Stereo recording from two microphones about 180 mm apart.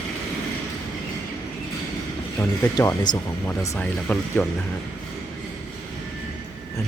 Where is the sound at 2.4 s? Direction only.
20° left (ahead or behind).